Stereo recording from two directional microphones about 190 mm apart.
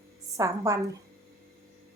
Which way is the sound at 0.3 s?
15° right (ahead or behind).